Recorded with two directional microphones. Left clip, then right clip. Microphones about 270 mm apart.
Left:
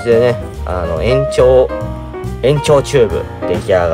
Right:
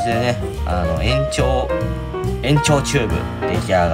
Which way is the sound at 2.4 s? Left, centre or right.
Left.